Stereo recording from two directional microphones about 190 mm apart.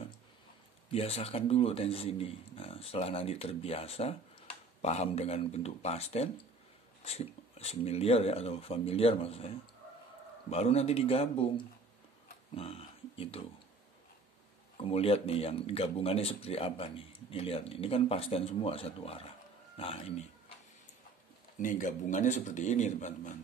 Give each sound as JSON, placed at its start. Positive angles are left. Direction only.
{"t": 0.9, "sound": "speech", "side_deg": 30}
{"t": 10.5, "sound": "speech", "side_deg": 35}
{"t": 12.5, "sound": "a sound", "side_deg": 30}
{"t": 14.8, "sound": "speech", "side_deg": 30}
{"t": 21.5, "sound": "speech", "side_deg": 45}